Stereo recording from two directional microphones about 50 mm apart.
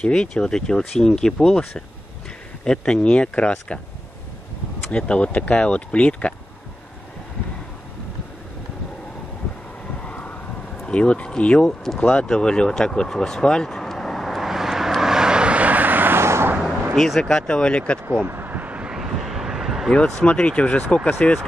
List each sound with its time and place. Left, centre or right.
0.0 s speech: centre
4.9 s speech: left
10.0 s vehicle: left
10.9 s speech: left
12.3 s vehicle: centre; by 16.2 s right
16.2 s vehicle: right
16.9 s speech: centre
18.2 s vehicle: right
18.9 s vehicle: centre
19.9 s speech: centre